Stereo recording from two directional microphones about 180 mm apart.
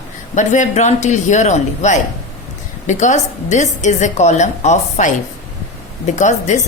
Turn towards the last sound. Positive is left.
turn(degrees=40)  # may be behind; listen again after turning